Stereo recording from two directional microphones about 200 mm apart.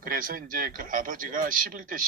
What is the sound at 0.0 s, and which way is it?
Speech, 45° right (ahead or behind).